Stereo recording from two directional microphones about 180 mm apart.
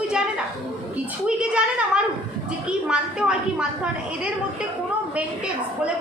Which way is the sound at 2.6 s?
5° right (ahead or behind).